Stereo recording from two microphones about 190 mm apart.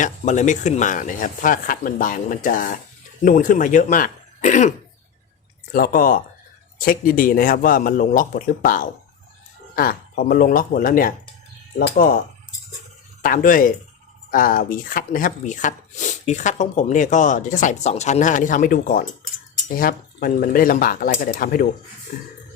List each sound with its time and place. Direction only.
0.0 s speech: 40° left (ahead or behind)
5.7 s speech: 50° left (ahead or behind)
13.2 s speech: 45° left (ahead or behind)